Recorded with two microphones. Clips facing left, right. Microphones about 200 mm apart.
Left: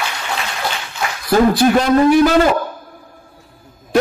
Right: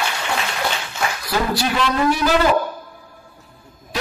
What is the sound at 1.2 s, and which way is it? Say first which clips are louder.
Speech: left 11 dB; 50° left (ahead or behind).